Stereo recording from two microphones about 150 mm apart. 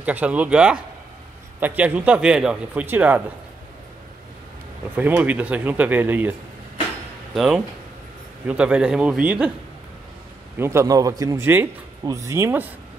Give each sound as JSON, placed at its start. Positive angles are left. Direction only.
{"t": 0.0, "sound": "speech", "side_deg": -10}
{"t": 4.9, "sound": "speech", "side_deg": -10}
{"t": 7.3, "sound": "speech", "side_deg": -5}
{"t": 10.6, "sound": "speech", "side_deg": -20}